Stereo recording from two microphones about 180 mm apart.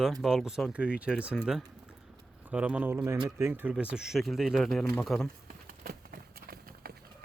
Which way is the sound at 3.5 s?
10° right (ahead or behind).